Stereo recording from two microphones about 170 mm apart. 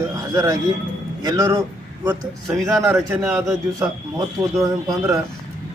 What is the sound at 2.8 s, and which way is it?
A man's voice, 20° right (ahead or behind).